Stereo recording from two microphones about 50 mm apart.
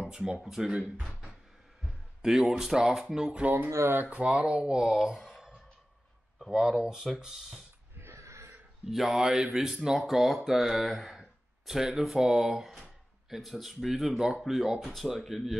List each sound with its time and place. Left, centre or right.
0.1 s speech: centre
0.4 s speech: centre
2.2 s speech: centre
8.0 s wheeze: right
8.9 s speech: centre